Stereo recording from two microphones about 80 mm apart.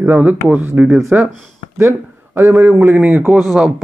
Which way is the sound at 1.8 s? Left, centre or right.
Right.